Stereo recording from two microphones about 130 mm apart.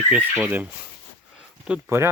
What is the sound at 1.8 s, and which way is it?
Speech, 20° right (ahead or behind).